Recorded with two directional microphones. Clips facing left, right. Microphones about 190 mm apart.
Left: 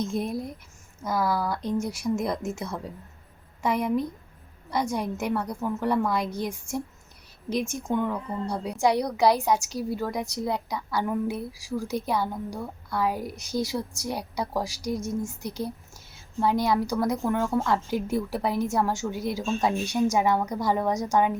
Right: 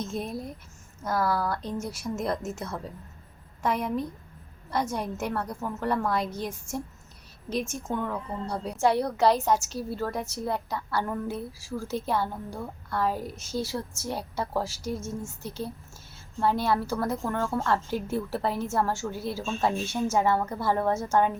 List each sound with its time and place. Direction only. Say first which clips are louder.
0.0 s a woman's voice: left 4 dB; 15° left (ahead or behind)